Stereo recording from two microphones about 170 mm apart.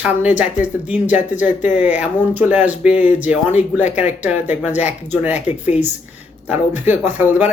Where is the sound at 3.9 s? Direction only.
10° right (ahead or behind).